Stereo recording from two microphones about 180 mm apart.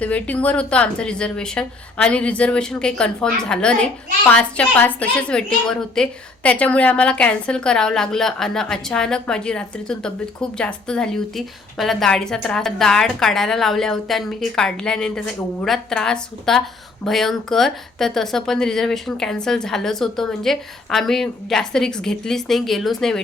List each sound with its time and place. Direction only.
0.0 s a woman's voice: 5° left (ahead or behind)